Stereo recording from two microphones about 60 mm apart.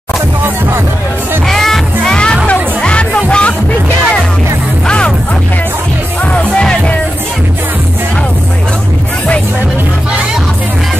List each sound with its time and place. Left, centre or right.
1.5 s music: centre
4.8 s music: centre
6.3 s music: centre